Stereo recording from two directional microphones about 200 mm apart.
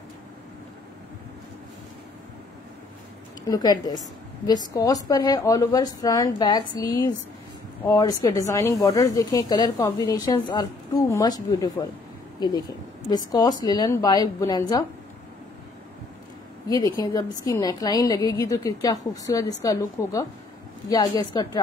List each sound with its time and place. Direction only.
3.4 s a woman's voice: 20° left (ahead or behind)
16.6 s a woman's voice: 20° left (ahead or behind)